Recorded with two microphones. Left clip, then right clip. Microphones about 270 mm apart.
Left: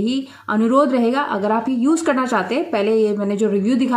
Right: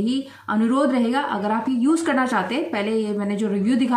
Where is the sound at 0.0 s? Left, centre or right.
Centre.